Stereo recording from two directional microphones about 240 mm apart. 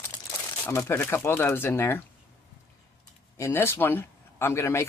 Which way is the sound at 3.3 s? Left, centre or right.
Centre.